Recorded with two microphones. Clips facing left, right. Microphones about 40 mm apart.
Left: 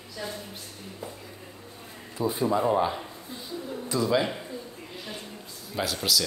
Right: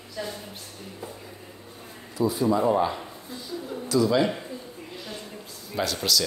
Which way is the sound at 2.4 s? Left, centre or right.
Centre.